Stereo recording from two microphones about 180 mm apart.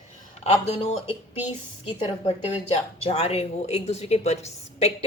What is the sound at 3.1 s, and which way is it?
A woman's voice, 35° left (ahead or behind).